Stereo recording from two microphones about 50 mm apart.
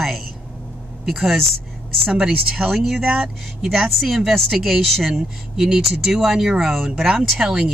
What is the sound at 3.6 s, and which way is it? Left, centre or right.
Speech, centre.